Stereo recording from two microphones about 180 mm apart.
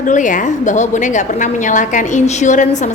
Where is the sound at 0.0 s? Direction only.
45° left (ahead or behind).